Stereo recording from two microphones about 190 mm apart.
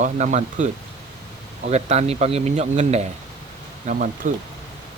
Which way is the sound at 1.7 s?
35° right (ahead or behind).